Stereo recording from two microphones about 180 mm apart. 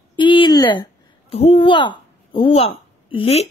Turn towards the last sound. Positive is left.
turn(degrees=30)  # may be behind; listen again after turning